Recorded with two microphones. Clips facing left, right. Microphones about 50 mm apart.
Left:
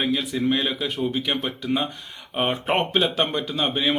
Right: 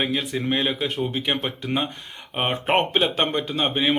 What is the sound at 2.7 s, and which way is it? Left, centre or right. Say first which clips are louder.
Speech: right 3 dB; right.